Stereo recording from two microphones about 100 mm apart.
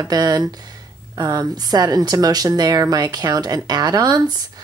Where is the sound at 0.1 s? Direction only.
40° right (ahead or behind).